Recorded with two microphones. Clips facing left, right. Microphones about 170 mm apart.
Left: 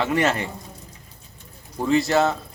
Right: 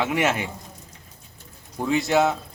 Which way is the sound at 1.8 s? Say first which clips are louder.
Left 1 dB; centre (ahead or behind).